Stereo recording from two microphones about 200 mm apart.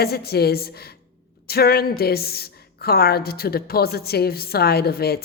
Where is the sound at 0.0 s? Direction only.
50° left (ahead or behind).